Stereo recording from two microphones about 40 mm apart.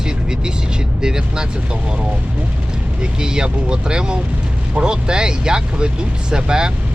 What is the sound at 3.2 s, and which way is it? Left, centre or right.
Speech, centre.